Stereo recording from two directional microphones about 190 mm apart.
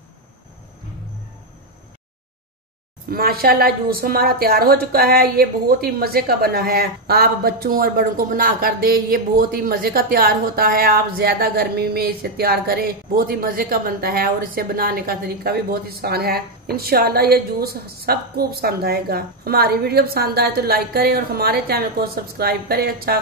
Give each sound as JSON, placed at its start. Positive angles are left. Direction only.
{"t": 3.1, "sound": "a woman's voice", "side_deg": -50}